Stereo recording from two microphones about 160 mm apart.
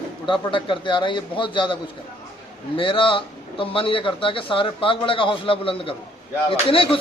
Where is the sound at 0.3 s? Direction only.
30° left (ahead or behind).